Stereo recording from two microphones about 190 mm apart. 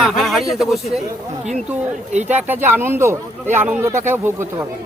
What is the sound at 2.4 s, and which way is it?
Speech, 10° right (ahead or behind).